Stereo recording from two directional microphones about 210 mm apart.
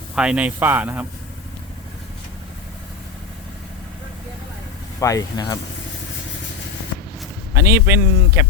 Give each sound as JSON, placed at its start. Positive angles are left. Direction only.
{"t": 0.2, "sound": "a man's voice", "side_deg": -5}
{"t": 4.9, "sound": "speech", "side_deg": 15}
{"t": 7.5, "sound": "a man's voice", "side_deg": -10}